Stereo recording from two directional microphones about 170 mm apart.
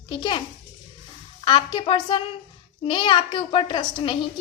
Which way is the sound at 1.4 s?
30° left (ahead or behind).